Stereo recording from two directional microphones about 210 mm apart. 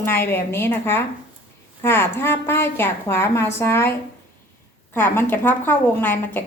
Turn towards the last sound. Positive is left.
turn(degrees=10)  # may be behind; listen again after turning